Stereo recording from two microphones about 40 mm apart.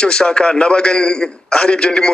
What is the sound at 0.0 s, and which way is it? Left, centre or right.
Speech, centre.